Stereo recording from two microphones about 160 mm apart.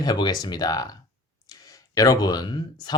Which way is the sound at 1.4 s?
20° left (ahead or behind).